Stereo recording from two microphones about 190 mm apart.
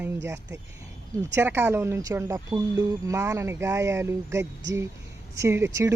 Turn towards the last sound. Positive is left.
turn(degrees=-15)  # may be behind; listen again after turning